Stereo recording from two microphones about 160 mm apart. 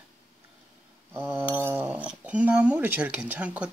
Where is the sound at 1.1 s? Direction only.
10° right (ahead or behind).